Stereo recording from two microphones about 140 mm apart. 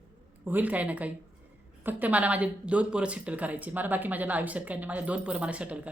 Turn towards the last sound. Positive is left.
turn(degrees=-10)  # may be behind; listen again after turning